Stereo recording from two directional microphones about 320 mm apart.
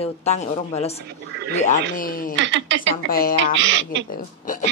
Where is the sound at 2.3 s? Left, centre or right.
Right.